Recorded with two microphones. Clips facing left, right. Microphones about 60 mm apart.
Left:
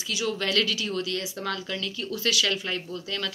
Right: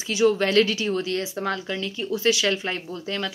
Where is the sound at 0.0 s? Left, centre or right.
Right.